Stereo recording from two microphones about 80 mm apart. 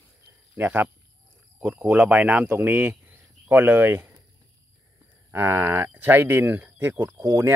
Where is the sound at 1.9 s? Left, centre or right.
Centre.